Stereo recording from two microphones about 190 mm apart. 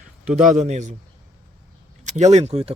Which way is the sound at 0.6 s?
35° right (ahead or behind).